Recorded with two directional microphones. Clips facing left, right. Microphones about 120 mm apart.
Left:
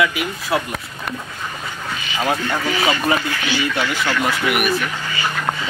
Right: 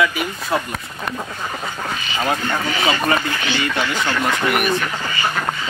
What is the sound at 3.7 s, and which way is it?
Speech, 5° left (ahead or behind).